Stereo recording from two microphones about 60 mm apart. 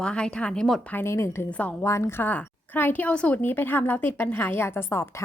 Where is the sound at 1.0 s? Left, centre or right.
Left.